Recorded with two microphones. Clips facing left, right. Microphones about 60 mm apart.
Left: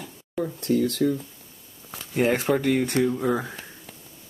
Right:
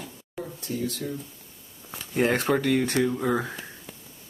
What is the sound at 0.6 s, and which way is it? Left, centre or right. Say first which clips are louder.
Speech: left 9 dB; left.